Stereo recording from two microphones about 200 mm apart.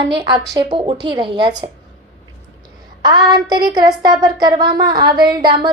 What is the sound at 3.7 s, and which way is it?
A woman's voice, 20° right (ahead or behind).